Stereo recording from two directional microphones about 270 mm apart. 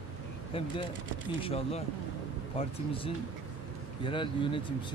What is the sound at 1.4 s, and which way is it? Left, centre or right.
Speech, left.